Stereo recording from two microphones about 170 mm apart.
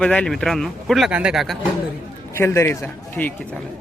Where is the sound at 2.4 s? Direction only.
15° left (ahead or behind).